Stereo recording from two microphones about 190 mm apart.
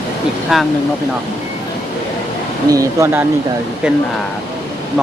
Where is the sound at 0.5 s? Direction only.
Centre (ahead or behind).